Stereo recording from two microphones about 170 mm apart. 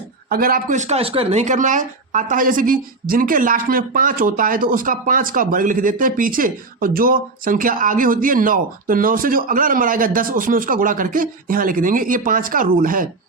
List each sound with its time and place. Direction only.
0.3 s speech: 60° right (ahead or behind)